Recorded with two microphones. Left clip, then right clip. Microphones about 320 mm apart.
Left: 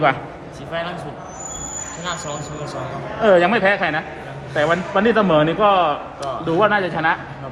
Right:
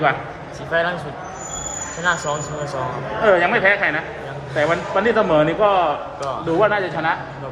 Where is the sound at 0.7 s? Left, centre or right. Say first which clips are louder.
Right 6 dB; centre.